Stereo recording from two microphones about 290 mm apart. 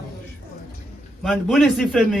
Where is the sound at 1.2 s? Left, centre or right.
Centre.